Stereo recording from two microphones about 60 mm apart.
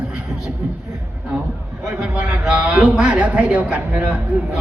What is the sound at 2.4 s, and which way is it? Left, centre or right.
A man's voice, centre.